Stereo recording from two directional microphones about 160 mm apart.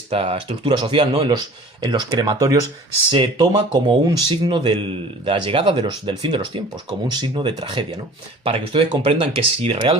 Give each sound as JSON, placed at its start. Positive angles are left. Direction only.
{"t": 0.1, "sound": "speech", "side_deg": -40}
{"t": 1.8, "sound": "speech", "side_deg": -25}